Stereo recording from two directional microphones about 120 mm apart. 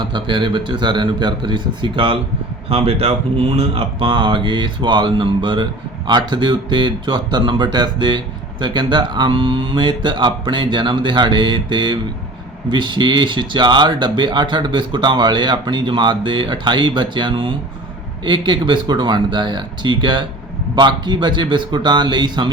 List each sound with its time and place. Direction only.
0.0 s speech: 40° right (ahead or behind)